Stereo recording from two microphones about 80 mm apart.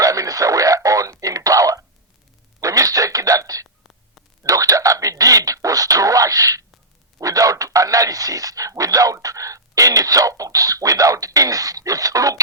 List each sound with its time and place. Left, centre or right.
0.0 s radio: right
2.6 s a sound: right
7.2 s radio: right